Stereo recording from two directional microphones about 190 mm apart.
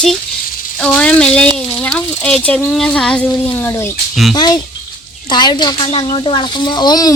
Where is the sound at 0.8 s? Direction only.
5° left (ahead or behind).